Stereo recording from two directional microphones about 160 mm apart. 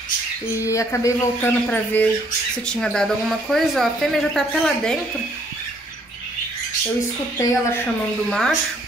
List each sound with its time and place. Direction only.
0.6 s speech: 20° left (ahead or behind); by 4.9 s centre (ahead or behind)
7.3 s a woman's voice: 15° left (ahead or behind)
8.3 s speech: 5° left (ahead or behind)